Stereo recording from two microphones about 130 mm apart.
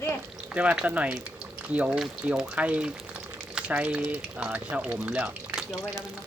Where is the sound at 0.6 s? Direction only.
10° right (ahead or behind).